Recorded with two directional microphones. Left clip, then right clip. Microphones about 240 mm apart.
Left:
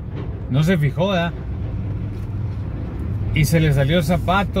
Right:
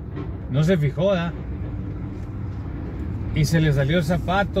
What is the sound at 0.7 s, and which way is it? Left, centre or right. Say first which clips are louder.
Speech: even; centre.